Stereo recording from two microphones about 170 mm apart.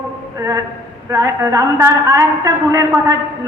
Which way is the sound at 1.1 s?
20° right (ahead or behind).